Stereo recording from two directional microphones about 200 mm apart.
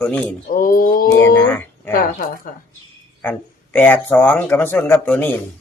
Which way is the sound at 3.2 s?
10° left (ahead or behind).